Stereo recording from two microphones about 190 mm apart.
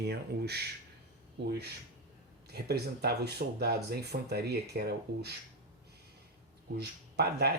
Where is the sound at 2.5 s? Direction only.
60° right (ahead or behind).